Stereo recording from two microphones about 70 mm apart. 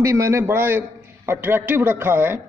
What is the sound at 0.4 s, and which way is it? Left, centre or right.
A man's voice, right.